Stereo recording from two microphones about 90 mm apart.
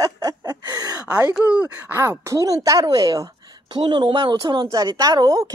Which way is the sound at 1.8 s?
30° right (ahead or behind).